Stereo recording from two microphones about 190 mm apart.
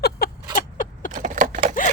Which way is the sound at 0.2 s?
50° left (ahead or behind).